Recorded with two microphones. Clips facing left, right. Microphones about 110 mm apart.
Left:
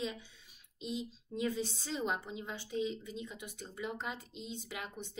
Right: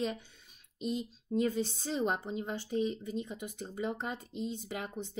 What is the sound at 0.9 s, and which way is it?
Speech, 45° right (ahead or behind).